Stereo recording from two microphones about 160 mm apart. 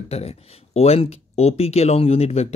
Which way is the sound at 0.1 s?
40° left (ahead or behind).